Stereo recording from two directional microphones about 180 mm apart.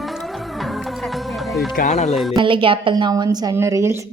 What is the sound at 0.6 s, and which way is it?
Music, centre (ahead or behind).